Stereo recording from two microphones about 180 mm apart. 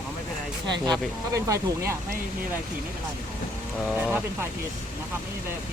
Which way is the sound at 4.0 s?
10° right (ahead or behind).